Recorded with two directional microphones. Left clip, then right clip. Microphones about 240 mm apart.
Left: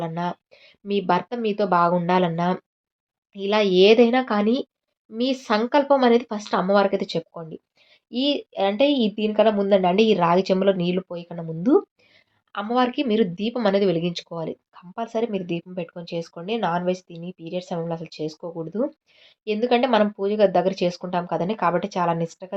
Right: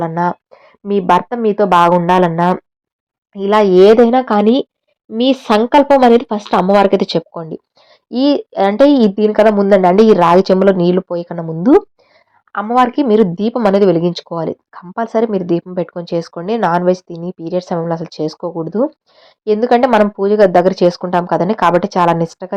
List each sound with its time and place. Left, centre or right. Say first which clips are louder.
0.0 s speech: right 11 dB; right